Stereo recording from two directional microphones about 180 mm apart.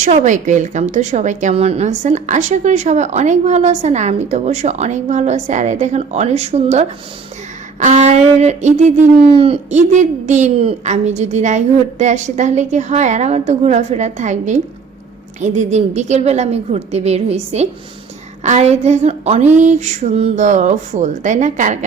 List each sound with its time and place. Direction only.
0.0 s a woman's voice: 40° right (ahead or behind)